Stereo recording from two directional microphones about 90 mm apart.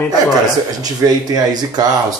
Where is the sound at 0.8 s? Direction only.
45° right (ahead or behind).